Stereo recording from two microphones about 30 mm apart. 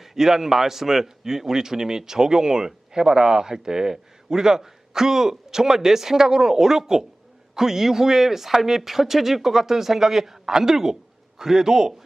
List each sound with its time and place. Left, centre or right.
0.0 s a man's voice: centre